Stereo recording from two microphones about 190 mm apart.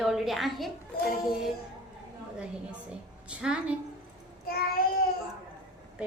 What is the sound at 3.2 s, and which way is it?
Speech, 5° right (ahead or behind).